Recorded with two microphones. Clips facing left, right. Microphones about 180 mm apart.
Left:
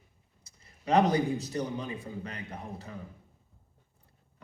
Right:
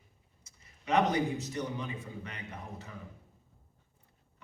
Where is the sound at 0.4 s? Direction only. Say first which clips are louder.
Left 4 dB; 35° left (ahead or behind).